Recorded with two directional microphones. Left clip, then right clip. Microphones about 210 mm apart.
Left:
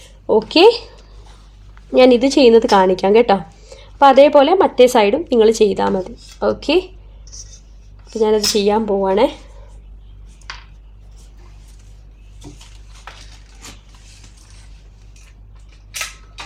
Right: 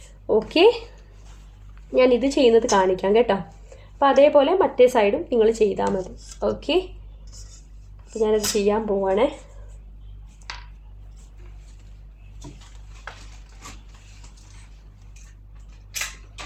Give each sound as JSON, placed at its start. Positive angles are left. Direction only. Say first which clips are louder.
{"t": 0.4, "sound": "speech", "louder": "left 6 dB", "side_deg": 25}
{"t": 1.9, "sound": "speech", "louder": "left 7 dB", "side_deg": 35}
{"t": 8.2, "sound": "speech", "louder": "left 6 dB", "side_deg": 50}